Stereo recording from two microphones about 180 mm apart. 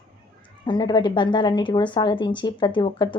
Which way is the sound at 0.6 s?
25° left (ahead or behind).